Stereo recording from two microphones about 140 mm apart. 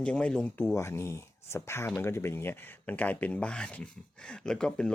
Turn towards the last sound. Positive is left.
turn(degrees=5)  # may be behind; listen again after turning